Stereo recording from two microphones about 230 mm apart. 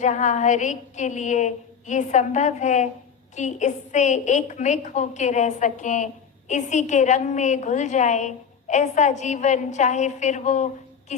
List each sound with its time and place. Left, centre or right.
0.0 s a woman's voice: left